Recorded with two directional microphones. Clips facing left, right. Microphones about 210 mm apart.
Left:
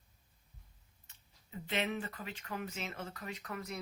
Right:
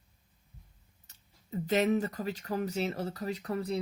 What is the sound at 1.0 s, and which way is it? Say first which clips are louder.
Speech: right 5 dB; 40° right (ahead or behind).